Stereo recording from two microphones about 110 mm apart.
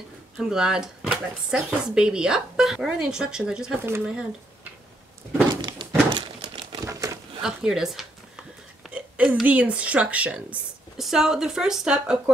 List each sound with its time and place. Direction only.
0.4 s speech: 5° right (ahead or behind)
5.5 s thunk: 40° right (ahead or behind)
6.7 s crumpling: 30° right (ahead or behind)
7.4 s a woman's voice: 5° right (ahead or behind)